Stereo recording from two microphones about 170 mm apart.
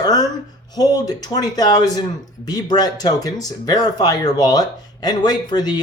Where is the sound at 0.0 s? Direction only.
25° left (ahead or behind).